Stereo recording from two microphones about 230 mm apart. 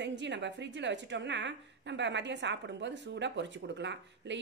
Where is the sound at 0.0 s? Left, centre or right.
Right.